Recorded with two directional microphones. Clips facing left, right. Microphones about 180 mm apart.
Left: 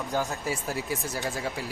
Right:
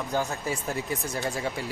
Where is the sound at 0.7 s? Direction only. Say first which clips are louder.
Right 1 dB; centre (ahead or behind).